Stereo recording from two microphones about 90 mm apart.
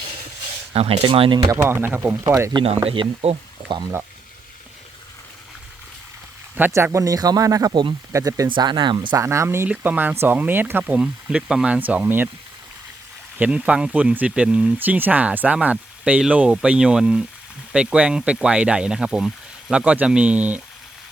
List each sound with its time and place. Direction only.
0.7 s speech: 90° right
1.6 s speech: 25° right (ahead or behind)
2.1 s speech: 35° right (ahead or behind)
2.6 s speech: 90° right; by 3.9 s 55° right (ahead or behind)
6.7 s speech: 35° right (ahead or behind)
7.7 s speech: 60° right (ahead or behind)
8.1 s speech: 40° right (ahead or behind)
8.4 s speech: 60° right (ahead or behind)
9.1 s speech: 35° right (ahead or behind)
9.6 s speech: 15° right (ahead or behind)
10.9 s speech: 10° right (ahead or behind)
13.4 s speech: 15° right (ahead or behind)